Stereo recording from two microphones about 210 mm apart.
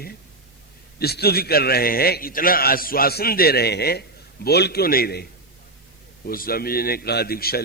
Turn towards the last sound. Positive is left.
turn(degrees=45)  # may be behind; listen again after turning